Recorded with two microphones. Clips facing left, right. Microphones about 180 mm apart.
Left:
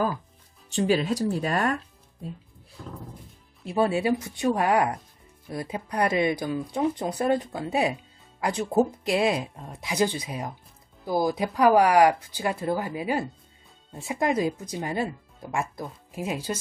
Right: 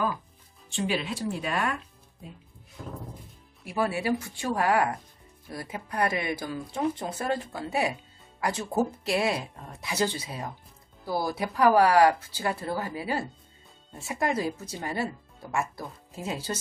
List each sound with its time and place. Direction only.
0.7 s speech: 40° left (ahead or behind)
3.6 s speech: 25° left (ahead or behind)